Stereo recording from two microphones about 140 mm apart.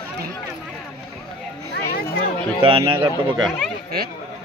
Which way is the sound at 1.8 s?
90° left.